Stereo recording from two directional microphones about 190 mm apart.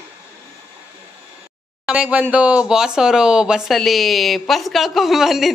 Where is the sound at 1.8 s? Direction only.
5° right (ahead or behind).